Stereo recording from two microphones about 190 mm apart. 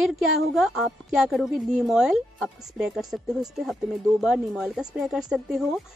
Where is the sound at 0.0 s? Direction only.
Centre (ahead or behind).